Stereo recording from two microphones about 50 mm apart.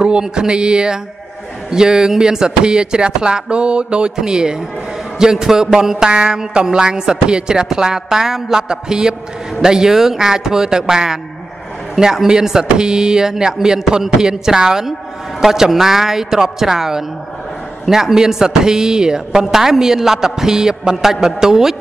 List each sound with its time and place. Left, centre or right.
0.0 s speech: centre